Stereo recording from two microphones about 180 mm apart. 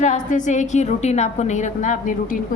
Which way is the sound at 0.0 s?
45° left (ahead or behind).